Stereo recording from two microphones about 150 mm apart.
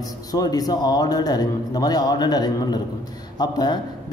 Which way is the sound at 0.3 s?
25° left (ahead or behind).